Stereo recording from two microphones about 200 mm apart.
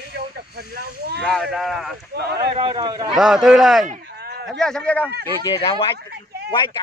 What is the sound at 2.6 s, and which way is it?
Speech, 20° right (ahead or behind).